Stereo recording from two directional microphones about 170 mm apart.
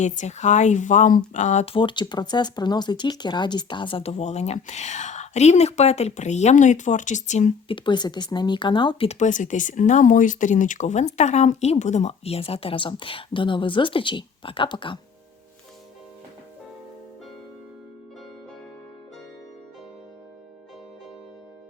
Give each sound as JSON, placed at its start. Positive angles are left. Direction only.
{"t": 0.0, "sound": "speech", "side_deg": 45}
{"t": 9.0, "sound": "speech", "side_deg": 45}